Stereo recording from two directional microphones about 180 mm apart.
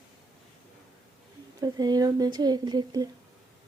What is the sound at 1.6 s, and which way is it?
Speech, 20° right (ahead or behind).